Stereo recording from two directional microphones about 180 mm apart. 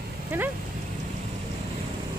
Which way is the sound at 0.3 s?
10° right (ahead or behind).